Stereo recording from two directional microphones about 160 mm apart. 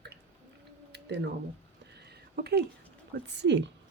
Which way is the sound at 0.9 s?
90° right.